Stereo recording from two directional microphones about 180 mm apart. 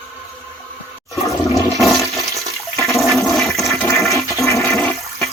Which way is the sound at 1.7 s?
Centre (ahead or behind).